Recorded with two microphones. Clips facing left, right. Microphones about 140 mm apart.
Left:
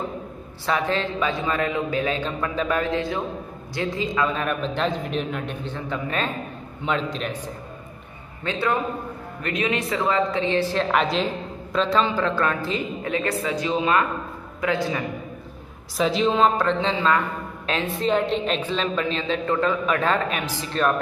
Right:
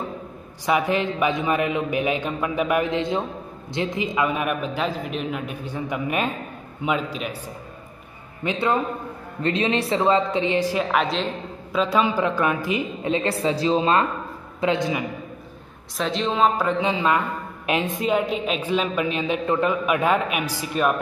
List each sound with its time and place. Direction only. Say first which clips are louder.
0.7 s a woman's voice: right 2 dB; 15° right (ahead or behind)
8.5 s a woman's voice: right 1 dB; 20° right (ahead or behind)
16.0 s a woman's voice: left 2 dB; 5° left (ahead or behind)